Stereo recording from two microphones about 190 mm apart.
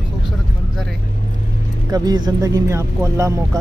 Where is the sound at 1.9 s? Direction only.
20° right (ahead or behind).